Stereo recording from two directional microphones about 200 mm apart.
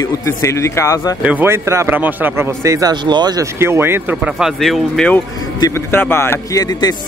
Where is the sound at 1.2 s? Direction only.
10° right (ahead or behind).